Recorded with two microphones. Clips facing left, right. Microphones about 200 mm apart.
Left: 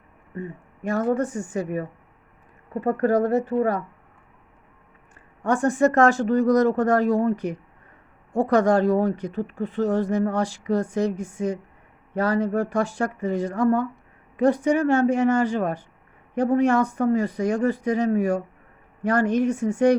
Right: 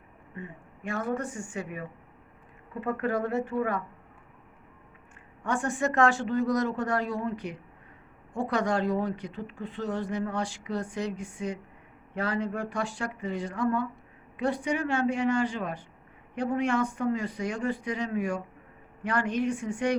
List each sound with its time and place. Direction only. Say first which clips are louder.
0.3 s speech: left 8 dB; 40° left (ahead or behind)
5.4 s speech: left 9 dB; 40° left (ahead or behind)